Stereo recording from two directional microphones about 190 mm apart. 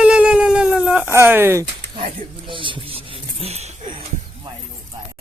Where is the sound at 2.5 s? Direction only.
25° right (ahead or behind).